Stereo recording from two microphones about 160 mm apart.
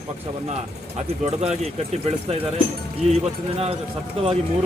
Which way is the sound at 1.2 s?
40° right (ahead or behind).